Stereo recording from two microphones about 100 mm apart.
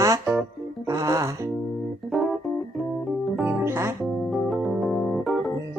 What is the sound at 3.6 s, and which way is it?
Speech, 25° right (ahead or behind).